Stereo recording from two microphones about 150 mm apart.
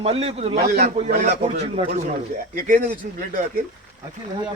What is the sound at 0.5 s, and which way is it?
Speech, 90° right.